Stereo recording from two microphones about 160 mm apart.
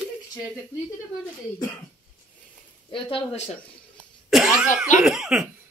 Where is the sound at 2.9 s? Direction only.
35° left (ahead or behind).